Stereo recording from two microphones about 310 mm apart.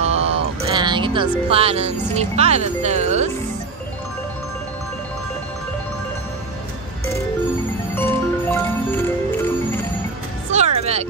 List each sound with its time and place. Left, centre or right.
0.0 s music: centre
1.5 s speech: centre
8.0 s music: centre
10.5 s music: right